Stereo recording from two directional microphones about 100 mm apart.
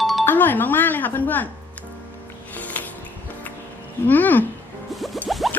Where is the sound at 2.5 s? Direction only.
15° left (ahead or behind).